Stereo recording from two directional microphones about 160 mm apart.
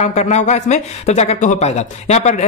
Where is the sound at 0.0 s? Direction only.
45° left (ahead or behind).